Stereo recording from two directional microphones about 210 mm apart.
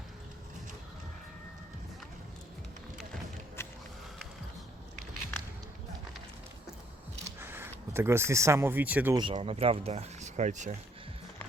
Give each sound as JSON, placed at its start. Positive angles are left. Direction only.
{"t": 3.6, "sound": "a sound", "side_deg": 10}
{"t": 7.3, "sound": "speech", "side_deg": -10}
{"t": 9.1, "sound": "speech", "side_deg": -25}